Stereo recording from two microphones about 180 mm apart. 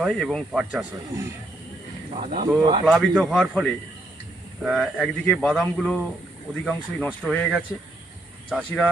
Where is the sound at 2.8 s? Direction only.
5° right (ahead or behind).